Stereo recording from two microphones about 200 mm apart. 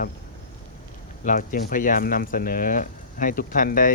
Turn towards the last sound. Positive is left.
turn(degrees=45)  # may be behind; listen again after turning